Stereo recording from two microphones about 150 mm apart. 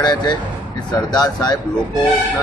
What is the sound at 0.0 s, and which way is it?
A man's voice, 30° left (ahead or behind).